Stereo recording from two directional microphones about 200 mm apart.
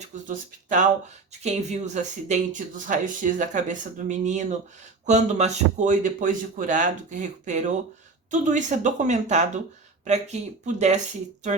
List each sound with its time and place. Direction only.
0.0 s speech: 40° right (ahead or behind)